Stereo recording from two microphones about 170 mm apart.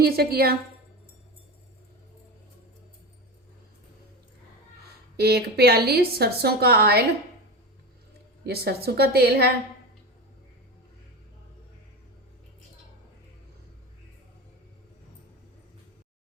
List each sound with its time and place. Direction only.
0.0 s a woman's voice: 65° right (ahead or behind)
5.1 s a woman's voice: 70° right (ahead or behind)
8.4 s a woman's voice: 70° right (ahead or behind)